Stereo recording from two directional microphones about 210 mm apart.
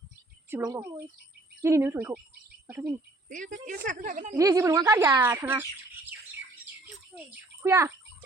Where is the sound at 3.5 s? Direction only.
40° right (ahead or behind).